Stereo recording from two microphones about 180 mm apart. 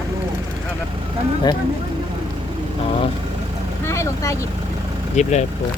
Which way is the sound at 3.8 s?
15° left (ahead or behind).